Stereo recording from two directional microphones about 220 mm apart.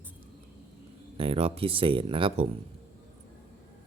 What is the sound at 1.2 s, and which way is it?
Speech, 25° right (ahead or behind).